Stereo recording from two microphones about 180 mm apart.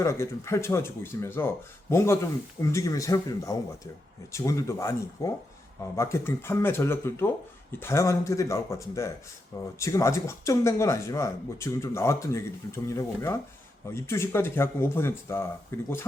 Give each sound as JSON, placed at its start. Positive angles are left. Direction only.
{"t": 0.0, "sound": "speech", "side_deg": 15}